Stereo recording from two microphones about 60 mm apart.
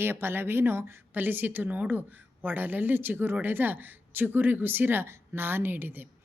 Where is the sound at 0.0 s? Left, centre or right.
Right.